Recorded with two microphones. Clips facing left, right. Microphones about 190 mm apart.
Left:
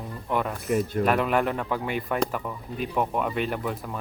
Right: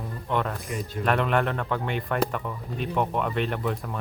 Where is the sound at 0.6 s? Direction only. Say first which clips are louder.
Left 8 dB; 55° left (ahead or behind).